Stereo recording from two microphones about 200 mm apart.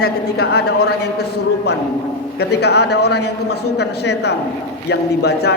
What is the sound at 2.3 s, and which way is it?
A man's voice, 55° left (ahead or behind).